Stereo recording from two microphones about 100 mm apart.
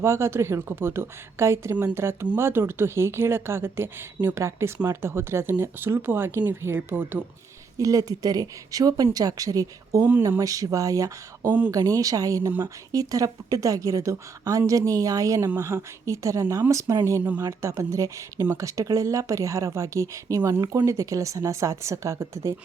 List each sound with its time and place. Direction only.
0.0 s speech: 25° right (ahead or behind)
7.8 s speech: 35° right (ahead or behind)